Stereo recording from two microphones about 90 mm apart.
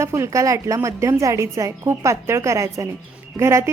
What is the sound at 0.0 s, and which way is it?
A woman's voice, 30° right (ahead or behind).